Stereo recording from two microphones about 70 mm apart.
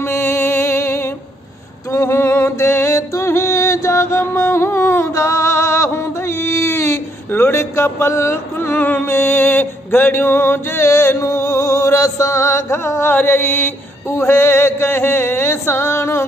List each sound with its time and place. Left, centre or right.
0.0 s music: left
5.9 s a sound: left
7.4 s music: left
13.1 s mantra: left